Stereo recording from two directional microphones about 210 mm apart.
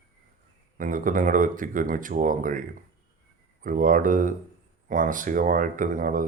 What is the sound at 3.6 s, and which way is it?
Speech, 40° right (ahead or behind).